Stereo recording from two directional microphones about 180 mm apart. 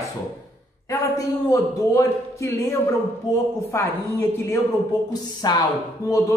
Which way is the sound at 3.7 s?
15° left (ahead or behind).